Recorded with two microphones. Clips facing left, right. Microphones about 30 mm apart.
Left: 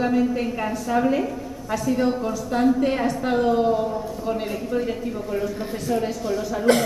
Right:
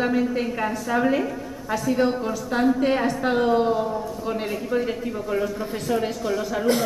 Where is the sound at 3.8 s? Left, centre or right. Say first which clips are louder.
Left 1 dB; centre.